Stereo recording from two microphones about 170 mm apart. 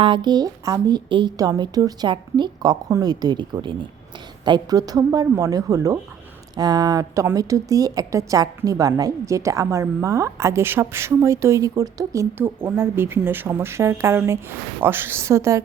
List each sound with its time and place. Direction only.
0.0 s a woman's voice: 30° right (ahead or behind)